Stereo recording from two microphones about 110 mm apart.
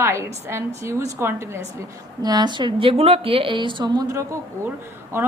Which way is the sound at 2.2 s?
40° right (ahead or behind).